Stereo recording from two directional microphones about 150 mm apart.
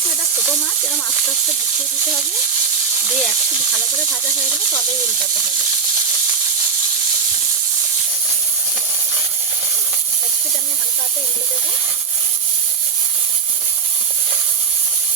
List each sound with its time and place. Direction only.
3.0 s speech: 5° right (ahead or behind)